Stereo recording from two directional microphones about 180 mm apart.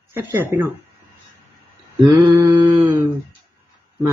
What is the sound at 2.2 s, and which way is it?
Speech, 15° right (ahead or behind).